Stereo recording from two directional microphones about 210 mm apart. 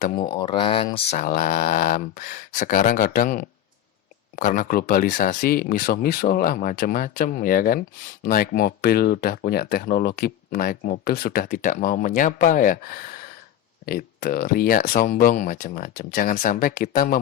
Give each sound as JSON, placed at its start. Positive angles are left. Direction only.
{"t": 0.2, "sound": "speech", "side_deg": 20}
{"t": 1.1, "sound": "speech", "side_deg": 40}